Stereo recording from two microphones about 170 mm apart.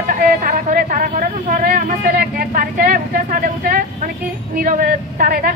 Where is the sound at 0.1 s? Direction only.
50° right (ahead or behind).